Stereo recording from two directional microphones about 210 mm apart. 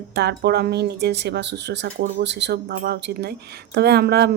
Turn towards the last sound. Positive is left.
turn(degrees=-50)  # may be behind; listen again after turning